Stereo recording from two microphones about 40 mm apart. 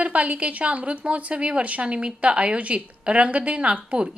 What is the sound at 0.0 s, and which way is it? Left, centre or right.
A woman's voice, right.